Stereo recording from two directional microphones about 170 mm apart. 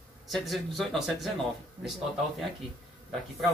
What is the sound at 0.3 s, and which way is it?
Speech, centre (ahead or behind).